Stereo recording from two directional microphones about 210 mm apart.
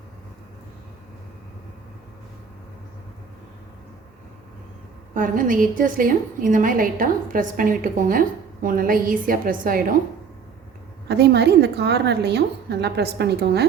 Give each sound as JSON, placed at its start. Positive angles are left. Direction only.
{"t": 5.1, "sound": "a woman's voice", "side_deg": -40}
{"t": 11.1, "sound": "a woman's voice", "side_deg": -50}